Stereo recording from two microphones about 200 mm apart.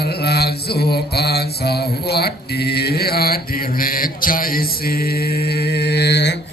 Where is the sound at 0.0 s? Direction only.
55° left (ahead or behind).